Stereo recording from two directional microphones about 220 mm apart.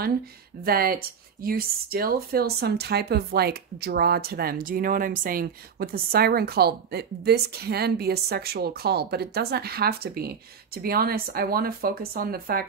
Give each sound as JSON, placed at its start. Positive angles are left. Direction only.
{"t": 0.7, "sound": "speech", "side_deg": -40}